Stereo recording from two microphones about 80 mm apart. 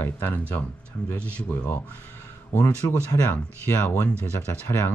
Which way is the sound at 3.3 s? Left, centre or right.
Left.